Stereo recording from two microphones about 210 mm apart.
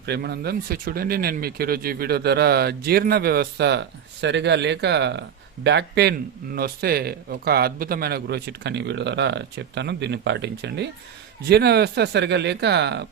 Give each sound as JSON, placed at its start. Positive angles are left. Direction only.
{"t": 0.0, "sound": "speech", "side_deg": -50}